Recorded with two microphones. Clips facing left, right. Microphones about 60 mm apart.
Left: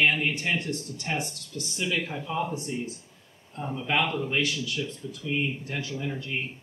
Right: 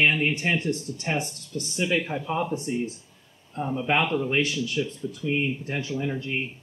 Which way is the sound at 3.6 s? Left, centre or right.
Centre.